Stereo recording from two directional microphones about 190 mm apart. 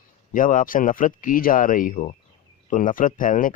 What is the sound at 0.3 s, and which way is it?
Speech, 45° left (ahead or behind).